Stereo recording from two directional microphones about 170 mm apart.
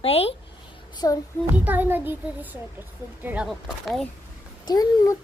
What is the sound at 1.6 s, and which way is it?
A child's voice, 10° right (ahead or behind).